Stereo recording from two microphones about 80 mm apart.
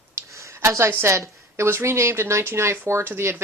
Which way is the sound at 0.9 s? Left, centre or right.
Right.